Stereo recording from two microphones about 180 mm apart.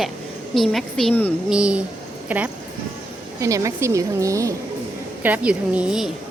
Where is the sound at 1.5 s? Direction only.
5° right (ahead or behind).